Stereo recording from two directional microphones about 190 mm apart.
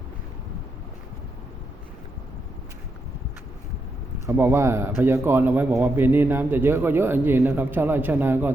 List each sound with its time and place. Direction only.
4.3 s a man's voice: 15° right (ahead or behind)